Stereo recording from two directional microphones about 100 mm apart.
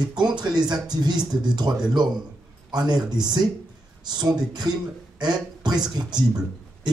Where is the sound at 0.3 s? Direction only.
45° right (ahead or behind).